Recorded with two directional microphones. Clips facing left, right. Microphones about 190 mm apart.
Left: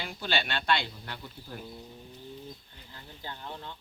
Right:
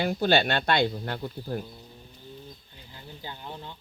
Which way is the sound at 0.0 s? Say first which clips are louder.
Right 10 dB; 45° right (ahead or behind).